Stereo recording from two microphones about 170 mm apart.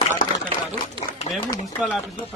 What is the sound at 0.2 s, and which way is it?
Chopping, 50° left (ahead or behind).